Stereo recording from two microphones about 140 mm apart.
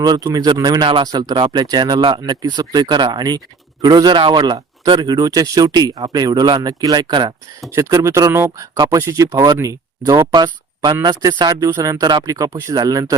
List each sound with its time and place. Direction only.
0.0 s speech: 30° right (ahead or behind)
7.8 s speech: 20° right (ahead or behind)